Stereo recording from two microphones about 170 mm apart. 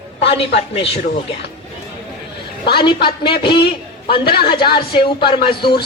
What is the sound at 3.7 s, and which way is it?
A man's voice, 30° left (ahead or behind).